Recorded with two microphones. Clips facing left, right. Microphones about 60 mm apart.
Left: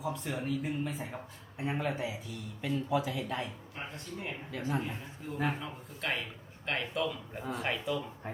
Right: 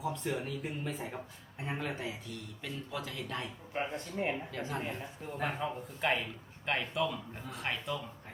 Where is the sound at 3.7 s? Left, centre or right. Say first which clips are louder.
Right 6 dB; right.